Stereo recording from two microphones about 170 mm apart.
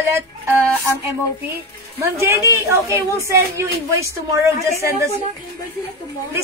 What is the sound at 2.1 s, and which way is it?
Speech, 15° right (ahead or behind).